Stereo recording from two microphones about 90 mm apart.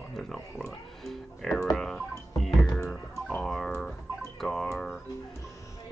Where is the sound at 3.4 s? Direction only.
5° left (ahead or behind).